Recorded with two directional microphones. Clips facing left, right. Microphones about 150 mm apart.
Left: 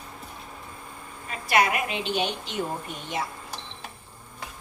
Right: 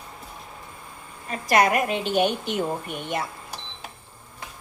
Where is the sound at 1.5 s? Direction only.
45° right (ahead or behind).